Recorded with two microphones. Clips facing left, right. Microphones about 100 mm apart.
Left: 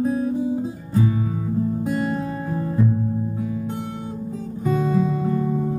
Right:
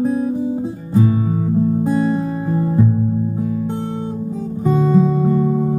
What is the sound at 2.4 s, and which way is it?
Music, 10° right (ahead or behind).